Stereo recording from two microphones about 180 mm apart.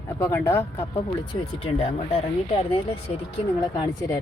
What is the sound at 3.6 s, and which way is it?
Speech, 20° left (ahead or behind).